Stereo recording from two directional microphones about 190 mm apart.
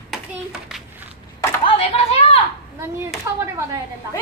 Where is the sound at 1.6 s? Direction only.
30° left (ahead or behind).